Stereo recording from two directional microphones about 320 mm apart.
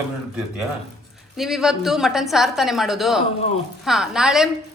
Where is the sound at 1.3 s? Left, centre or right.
Centre.